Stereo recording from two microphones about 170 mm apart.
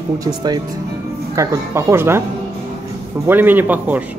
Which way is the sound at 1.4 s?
15° right (ahead or behind).